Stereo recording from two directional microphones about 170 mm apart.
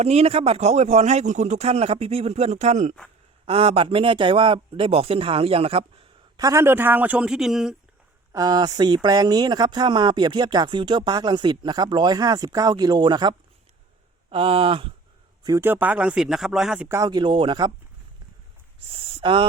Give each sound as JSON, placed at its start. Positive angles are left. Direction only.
{"t": 0.0, "sound": "speech", "side_deg": -40}
{"t": 6.4, "sound": "speech", "side_deg": -15}
{"t": 8.3, "sound": "speech", "side_deg": -20}
{"t": 15.4, "sound": "speech", "side_deg": -15}
{"t": 16.9, "sound": "speech", "side_deg": -20}
{"t": 18.9, "sound": "speech", "side_deg": -35}